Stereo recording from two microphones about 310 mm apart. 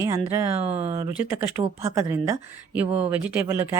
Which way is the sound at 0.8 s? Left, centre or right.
Centre.